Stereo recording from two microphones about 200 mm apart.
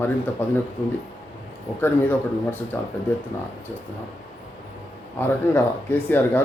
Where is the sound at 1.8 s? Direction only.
10° left (ahead or behind).